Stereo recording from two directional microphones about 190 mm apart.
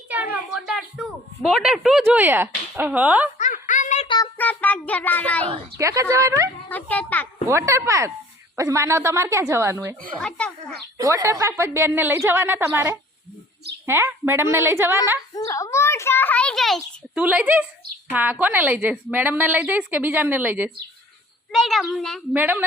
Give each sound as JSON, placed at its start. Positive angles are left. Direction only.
{"t": 0.1, "sound": "speech", "side_deg": -5}
{"t": 3.3, "sound": "synthetic singing", "side_deg": 40}
{"t": 4.4, "sound": "a child's voice", "side_deg": 10}
{"t": 5.7, "sound": "a woman's voice", "side_deg": -15}
{"t": 6.7, "sound": "a child's voice", "side_deg": 10}
{"t": 7.4, "sound": "a woman's voice", "side_deg": -15}
{"t": 10.2, "sound": "a child's voice", "side_deg": 5}
{"t": 10.9, "sound": "a woman's voice", "side_deg": -15}
{"t": 15.4, "sound": "a child's voice", "side_deg": 15}
{"t": 21.5, "sound": "a child's voice", "side_deg": 0}
{"t": 22.4, "sound": "a woman's voice", "side_deg": -10}